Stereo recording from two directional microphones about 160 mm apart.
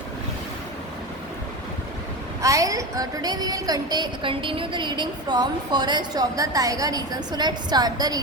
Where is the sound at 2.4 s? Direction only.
20° right (ahead or behind).